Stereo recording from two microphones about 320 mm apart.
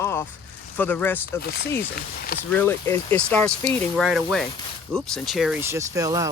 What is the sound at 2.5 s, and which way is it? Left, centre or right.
Speech, centre.